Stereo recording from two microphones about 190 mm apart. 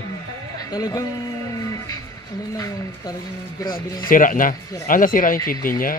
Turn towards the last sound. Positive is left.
turn(degrees=50)  # may be behind; listen again after turning